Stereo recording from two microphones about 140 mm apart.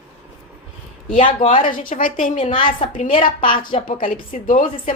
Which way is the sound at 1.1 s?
65° left (ahead or behind).